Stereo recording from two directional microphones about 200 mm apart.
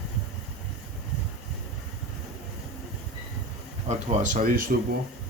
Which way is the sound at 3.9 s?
35° right (ahead or behind).